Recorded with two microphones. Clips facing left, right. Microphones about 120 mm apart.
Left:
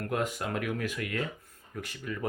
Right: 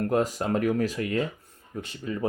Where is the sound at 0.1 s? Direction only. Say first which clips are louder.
Right 4 dB; 35° right (ahead or behind).